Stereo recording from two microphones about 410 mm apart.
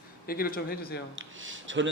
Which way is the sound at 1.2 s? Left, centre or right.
Right.